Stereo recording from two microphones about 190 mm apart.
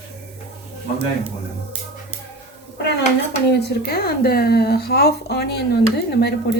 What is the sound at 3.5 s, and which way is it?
Speech, 60° left (ahead or behind).